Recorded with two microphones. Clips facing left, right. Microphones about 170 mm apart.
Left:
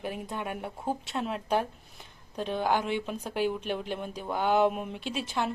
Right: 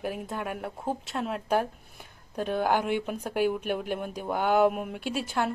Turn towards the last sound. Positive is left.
turn(degrees=-5)  # may be behind; listen again after turning